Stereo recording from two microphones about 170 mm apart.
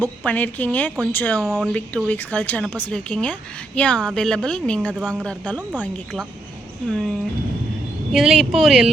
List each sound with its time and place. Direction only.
0.0 s a woman's voice: 10° left (ahead or behind)
1.4 s speech: 5° right (ahead or behind)
2.0 s a woman's voice: 10° left (ahead or behind)
6.8 s speech: 5° left (ahead or behind)